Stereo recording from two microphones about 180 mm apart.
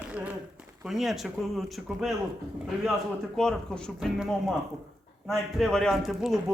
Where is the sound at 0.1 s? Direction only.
10° right (ahead or behind).